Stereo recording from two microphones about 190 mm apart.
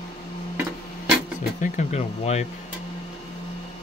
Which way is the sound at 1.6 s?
40° left (ahead or behind).